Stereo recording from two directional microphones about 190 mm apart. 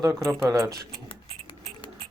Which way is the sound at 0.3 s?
15° right (ahead or behind).